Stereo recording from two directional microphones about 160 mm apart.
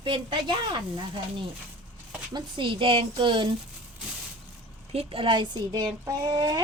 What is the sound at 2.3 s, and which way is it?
A woman's voice, 30° right (ahead or behind).